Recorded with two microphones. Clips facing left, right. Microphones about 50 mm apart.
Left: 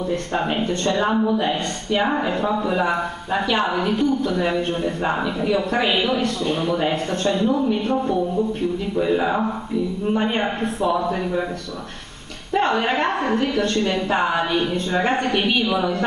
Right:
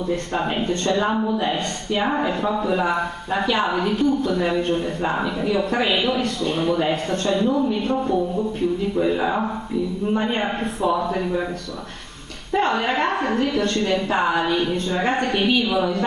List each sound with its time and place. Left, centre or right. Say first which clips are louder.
0.9 s speech: left 2 dB; centre
9.0 s speech: left 3 dB; centre
10.8 s speech: even; centre
12.5 s a woman's voice: left 1 dB; left
13.2 s speech: even; centre